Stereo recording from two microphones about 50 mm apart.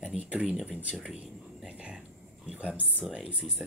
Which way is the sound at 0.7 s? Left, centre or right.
Right.